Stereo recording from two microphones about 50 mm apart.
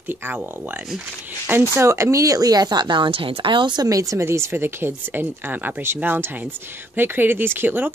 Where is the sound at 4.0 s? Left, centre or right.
Right.